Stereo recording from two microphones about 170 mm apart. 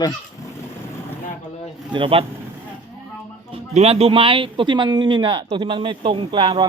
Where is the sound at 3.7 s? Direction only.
35° right (ahead or behind).